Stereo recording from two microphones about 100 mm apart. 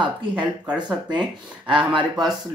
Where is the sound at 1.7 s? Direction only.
55° right (ahead or behind).